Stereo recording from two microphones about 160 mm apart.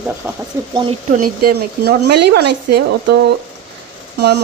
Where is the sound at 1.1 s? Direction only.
65° right (ahead or behind); by 2.8 s 90° right.